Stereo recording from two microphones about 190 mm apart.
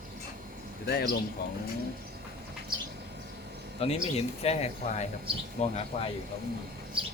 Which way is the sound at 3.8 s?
30° left (ahead or behind).